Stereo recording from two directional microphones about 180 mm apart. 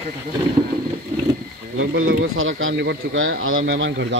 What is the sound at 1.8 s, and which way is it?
Speech, 90° right.